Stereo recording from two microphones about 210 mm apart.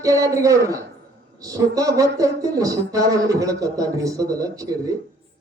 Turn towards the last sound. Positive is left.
turn(degrees=-15)  # may be behind; listen again after turning